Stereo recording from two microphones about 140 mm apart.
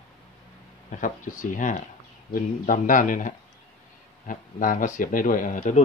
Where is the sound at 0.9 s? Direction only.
70° left (ahead or behind).